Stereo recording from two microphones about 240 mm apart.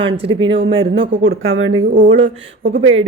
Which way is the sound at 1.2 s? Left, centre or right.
Right.